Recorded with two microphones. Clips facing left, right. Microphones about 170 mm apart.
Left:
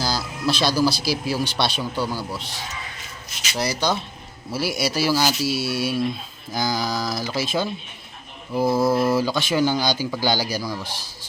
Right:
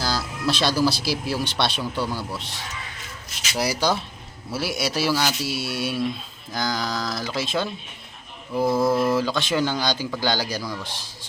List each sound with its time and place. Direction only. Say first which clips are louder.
0.0 s speech: left 1 dB; centre (ahead or behind)